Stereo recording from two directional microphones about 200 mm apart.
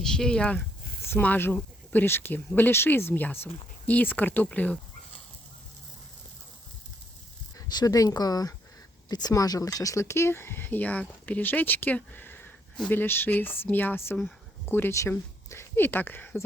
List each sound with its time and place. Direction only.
0.0 s speech: 5° left (ahead or behind)
7.7 s speech: 20° left (ahead or behind)